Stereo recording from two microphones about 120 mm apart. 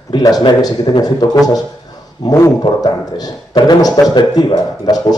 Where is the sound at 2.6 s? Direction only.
35° left (ahead or behind).